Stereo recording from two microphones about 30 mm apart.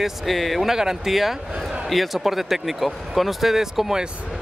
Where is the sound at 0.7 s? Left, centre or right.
Centre.